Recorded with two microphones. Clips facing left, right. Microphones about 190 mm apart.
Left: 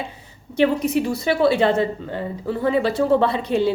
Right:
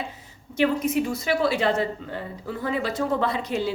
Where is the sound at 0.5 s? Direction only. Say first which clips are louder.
Left 4 dB; 30° left (ahead or behind).